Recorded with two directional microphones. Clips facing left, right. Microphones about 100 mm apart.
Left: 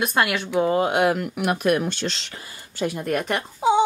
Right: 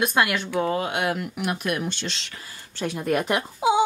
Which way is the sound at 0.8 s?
40° left (ahead or behind).